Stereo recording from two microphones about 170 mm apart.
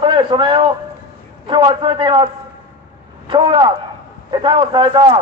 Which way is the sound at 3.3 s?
25° right (ahead or behind).